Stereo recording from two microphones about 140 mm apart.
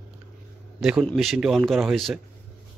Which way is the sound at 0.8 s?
5° right (ahead or behind).